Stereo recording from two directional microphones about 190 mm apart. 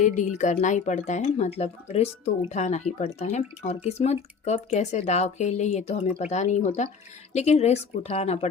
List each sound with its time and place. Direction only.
0.0 s speech: 40° left (ahead or behind)